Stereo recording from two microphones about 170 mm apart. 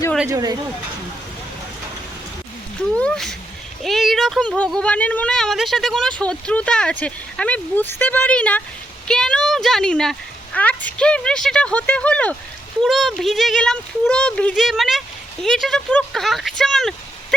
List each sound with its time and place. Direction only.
0.3 s speech: 20° right (ahead or behind)
2.9 s speech: 5° left (ahead or behind)